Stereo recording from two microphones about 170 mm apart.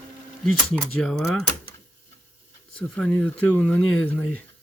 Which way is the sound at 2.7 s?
5° left (ahead or behind).